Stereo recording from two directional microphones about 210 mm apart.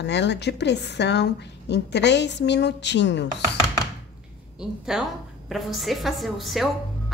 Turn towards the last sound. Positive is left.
turn(degrees=0)  # may be behind; listen again after turning